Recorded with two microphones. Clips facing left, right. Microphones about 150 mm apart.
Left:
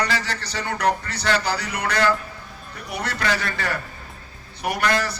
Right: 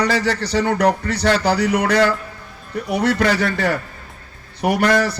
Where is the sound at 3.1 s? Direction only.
45° right (ahead or behind).